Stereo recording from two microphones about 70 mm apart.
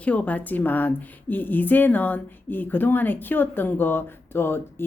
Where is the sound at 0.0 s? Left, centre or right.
Centre.